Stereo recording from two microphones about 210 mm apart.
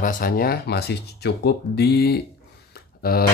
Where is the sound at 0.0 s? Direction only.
45° left (ahead or behind).